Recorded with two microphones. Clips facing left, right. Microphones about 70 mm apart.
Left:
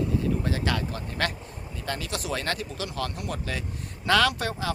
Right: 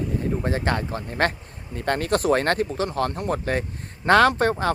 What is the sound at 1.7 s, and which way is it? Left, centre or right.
Speech, right.